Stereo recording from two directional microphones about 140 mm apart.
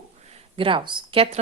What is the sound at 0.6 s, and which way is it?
Speech, 35° right (ahead or behind).